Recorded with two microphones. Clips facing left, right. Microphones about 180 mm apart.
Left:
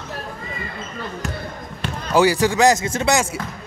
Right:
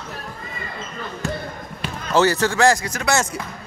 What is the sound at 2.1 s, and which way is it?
A man's voice, 15° left (ahead or behind).